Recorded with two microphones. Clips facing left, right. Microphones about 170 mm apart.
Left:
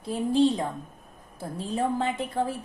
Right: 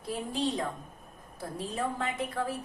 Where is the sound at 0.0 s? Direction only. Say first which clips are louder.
Left 9 dB; 30° left (ahead or behind).